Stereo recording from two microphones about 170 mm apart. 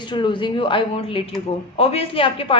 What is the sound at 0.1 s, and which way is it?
A woman's voice, 25° left (ahead or behind).